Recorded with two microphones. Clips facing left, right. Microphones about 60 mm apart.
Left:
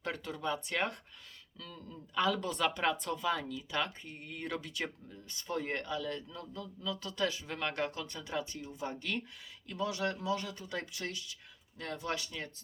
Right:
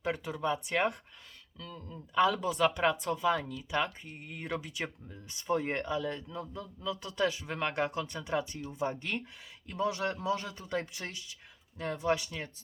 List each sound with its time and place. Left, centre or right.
0.0 s speech: centre